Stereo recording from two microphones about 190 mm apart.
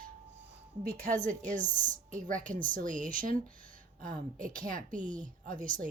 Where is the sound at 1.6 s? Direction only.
40° right (ahead or behind).